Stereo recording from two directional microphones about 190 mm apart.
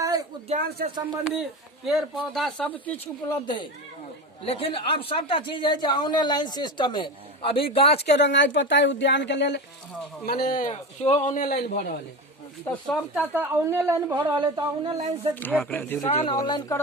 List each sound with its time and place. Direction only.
0.0 s a sound: 20° right (ahead or behind)
0.8 s speech: 50° right (ahead or behind)
1.4 s speech: centre (ahead or behind)
3.2 s speech: 20° left (ahead or behind)
8.1 s speech: 70° left (ahead or behind)
10.2 s a man's voice: 50° left (ahead or behind)
12.6 s speech: 5° left (ahead or behind)
13.3 s a woman's voice: 10° right (ahead or behind)
15.4 s speech: 10° left (ahead or behind)
16.2 s speech: 25° left (ahead or behind)